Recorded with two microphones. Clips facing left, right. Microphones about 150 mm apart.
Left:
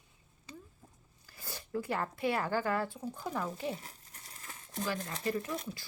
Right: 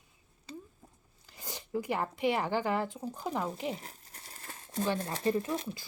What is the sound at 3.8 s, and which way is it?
Crumpling, 35° right (ahead or behind).